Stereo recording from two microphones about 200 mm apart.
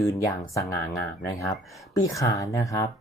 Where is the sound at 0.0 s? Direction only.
15° left (ahead or behind).